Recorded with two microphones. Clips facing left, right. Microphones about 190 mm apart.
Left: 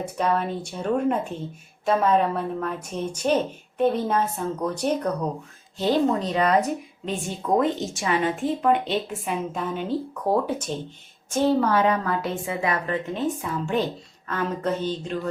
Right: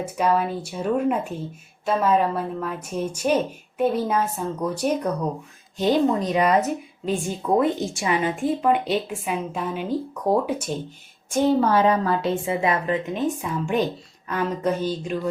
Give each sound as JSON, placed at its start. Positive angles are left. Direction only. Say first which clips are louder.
{"t": 0.0, "sound": "a woman's voice", "louder": "right 2 dB", "side_deg": -5}
{"t": 11.6, "sound": "a woman's voice", "louder": "right 2 dB", "side_deg": -30}